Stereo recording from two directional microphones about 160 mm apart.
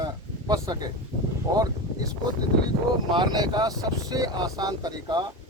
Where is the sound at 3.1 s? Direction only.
30° right (ahead or behind).